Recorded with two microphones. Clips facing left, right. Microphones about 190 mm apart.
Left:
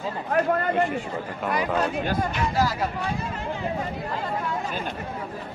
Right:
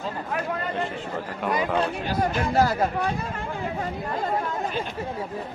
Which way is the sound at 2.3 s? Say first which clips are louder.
Right 3 dB; 55° right (ahead or behind).